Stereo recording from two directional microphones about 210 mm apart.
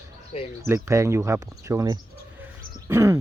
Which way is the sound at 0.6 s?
15° right (ahead or behind).